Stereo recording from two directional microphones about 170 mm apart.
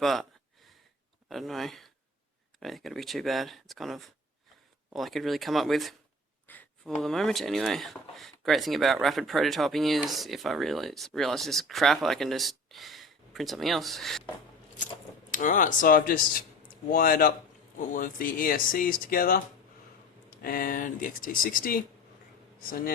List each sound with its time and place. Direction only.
0.0 s speech: centre (ahead or behind)
1.3 s speech: centre (ahead or behind)
6.5 s a sound: 10° left (ahead or behind)
7.0 s speech: centre (ahead or behind)
15.3 s speech: 50° left (ahead or behind)
20.4 s speech: 60° left (ahead or behind)